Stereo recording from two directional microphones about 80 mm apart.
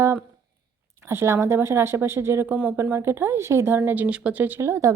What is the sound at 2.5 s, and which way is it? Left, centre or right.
Speech, centre.